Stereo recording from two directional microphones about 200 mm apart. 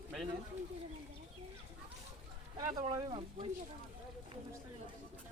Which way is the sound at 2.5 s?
20° right (ahead or behind).